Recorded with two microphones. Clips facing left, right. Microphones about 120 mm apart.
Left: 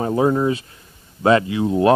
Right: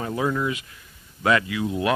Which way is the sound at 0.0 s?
30° left (ahead or behind).